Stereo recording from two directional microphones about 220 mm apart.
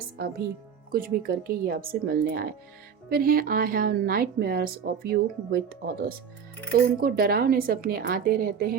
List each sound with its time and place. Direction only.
0.9 s a woman's voice: 40° right (ahead or behind)